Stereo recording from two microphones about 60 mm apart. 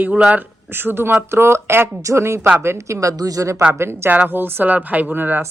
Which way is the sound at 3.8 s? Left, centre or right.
Right.